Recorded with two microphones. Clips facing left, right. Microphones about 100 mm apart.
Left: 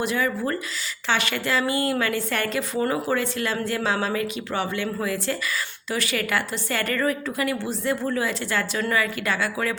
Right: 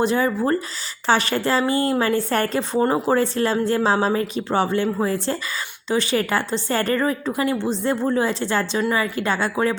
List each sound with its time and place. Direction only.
0.0 s a woman's voice: 30° right (ahead or behind)